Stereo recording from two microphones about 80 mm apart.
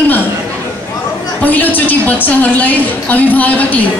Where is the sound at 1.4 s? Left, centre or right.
Left.